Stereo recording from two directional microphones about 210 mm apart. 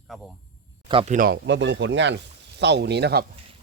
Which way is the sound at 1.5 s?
60° right (ahead or behind).